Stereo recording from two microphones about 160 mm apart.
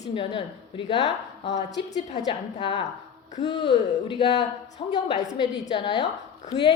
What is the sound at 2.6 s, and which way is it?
A woman's voice, 35° left (ahead or behind).